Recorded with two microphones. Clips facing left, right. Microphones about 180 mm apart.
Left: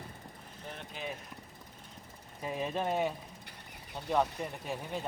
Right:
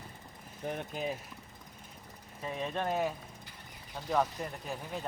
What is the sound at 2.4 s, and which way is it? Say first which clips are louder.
Speech: left 1 dB; 5° left (ahead or behind).